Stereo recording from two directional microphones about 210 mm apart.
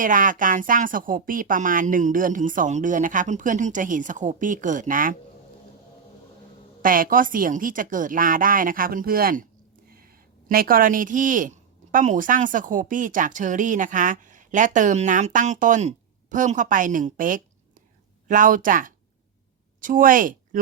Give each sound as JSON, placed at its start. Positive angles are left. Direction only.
{"t": 0.0, "sound": "a woman's voice", "side_deg": -40}
{"t": 6.8, "sound": "a woman's voice", "side_deg": -40}